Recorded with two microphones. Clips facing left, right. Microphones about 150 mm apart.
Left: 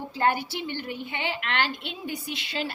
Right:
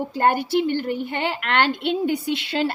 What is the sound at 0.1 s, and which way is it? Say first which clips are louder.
A woman's voice: right 5 dB; 55° right (ahead or behind).